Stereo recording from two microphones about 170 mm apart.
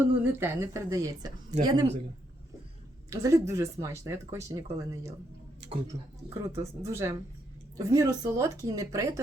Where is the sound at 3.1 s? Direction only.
20° right (ahead or behind).